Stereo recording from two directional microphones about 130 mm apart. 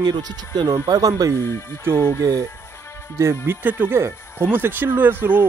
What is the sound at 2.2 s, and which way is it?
Speech, 25° right (ahead or behind).